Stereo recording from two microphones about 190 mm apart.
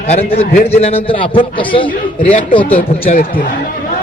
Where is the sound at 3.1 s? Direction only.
45° left (ahead or behind).